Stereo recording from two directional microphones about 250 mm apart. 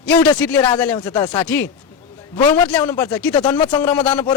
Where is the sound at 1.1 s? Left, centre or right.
Centre.